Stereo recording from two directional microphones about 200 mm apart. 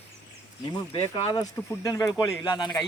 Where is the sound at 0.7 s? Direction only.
25° left (ahead or behind).